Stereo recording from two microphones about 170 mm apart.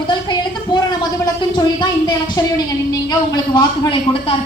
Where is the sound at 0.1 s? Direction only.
25° left (ahead or behind).